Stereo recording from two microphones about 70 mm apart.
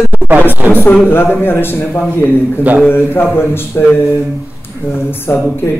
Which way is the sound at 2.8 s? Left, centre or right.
Left.